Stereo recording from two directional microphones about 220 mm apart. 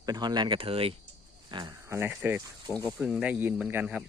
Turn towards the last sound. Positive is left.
turn(degrees=-5)  # may be behind; listen again after turning